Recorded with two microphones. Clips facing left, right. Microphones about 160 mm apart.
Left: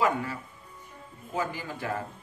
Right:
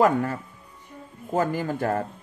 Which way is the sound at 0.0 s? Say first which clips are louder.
Right 7 dB; 50° right (ahead or behind).